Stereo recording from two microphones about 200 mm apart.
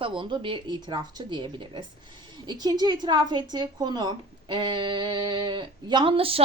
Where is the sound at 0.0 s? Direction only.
25° right (ahead or behind).